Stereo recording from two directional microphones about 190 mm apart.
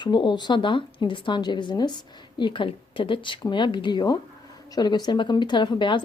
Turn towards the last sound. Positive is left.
turn(degrees=25)  # may be behind; listen again after turning